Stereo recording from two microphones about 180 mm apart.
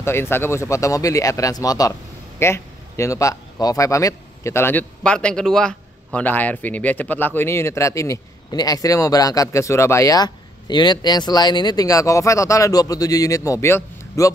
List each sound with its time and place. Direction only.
0.0 s speech: 15° left (ahead or behind)